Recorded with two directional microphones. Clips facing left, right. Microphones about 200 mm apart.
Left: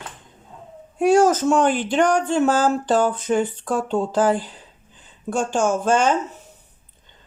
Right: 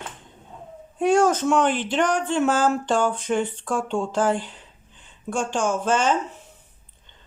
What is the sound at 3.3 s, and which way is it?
Speech, 40° left (ahead or behind).